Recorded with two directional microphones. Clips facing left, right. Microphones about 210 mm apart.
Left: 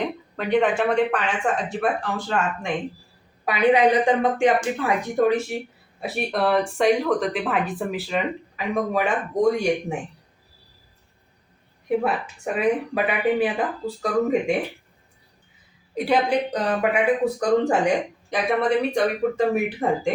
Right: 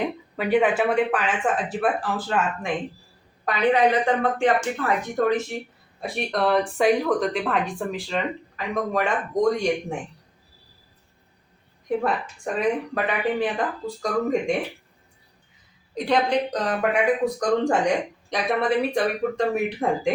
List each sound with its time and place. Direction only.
0.0 s speech: 5° right (ahead or behind)
3.4 s a woman's voice: 10° left (ahead or behind)
12.5 s speech: 10° left (ahead or behind)
16.0 s a woman's voice: 5° left (ahead or behind)